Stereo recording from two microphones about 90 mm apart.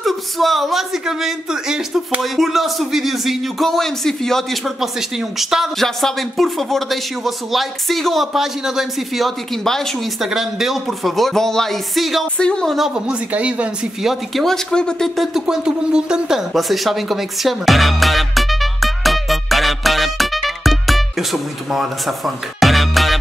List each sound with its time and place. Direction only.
0.0 s speech: centre (ahead or behind)
12.4 s a woman's voice: 10° left (ahead or behind)
13.1 s speech: 15° right (ahead or behind)
14.0 s speech: centre (ahead or behind)